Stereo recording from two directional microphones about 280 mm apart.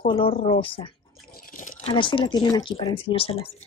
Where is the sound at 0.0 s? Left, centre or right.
Centre.